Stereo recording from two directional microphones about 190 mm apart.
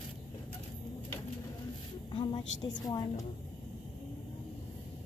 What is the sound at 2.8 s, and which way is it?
Speech, 20° left (ahead or behind).